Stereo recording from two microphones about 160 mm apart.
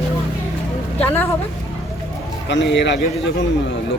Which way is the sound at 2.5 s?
90° left.